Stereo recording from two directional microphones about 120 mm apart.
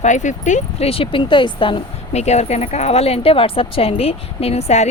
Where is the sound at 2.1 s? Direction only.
65° left (ahead or behind).